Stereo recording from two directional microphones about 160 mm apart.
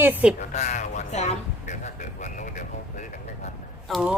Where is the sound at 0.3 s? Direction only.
45° left (ahead or behind).